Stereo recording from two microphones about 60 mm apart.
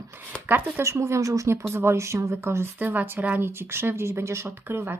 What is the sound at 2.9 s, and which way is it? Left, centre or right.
Speech, right.